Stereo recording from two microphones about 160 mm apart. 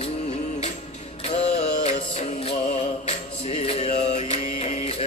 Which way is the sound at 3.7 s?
45° left (ahead or behind).